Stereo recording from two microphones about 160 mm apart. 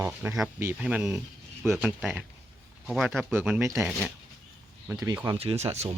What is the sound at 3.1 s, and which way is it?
Speech, 15° right (ahead or behind).